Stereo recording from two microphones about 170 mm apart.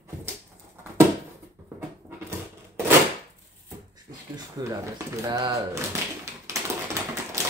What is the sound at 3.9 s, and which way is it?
Speech, 20° right (ahead or behind).